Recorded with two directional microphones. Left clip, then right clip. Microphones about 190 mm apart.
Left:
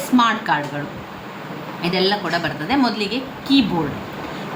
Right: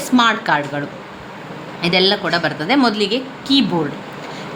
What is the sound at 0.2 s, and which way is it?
Speech, 45° right (ahead or behind).